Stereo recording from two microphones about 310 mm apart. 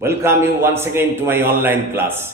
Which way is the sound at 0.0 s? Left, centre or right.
Centre.